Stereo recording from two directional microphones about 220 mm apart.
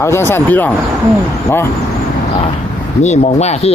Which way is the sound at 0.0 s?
10° left (ahead or behind).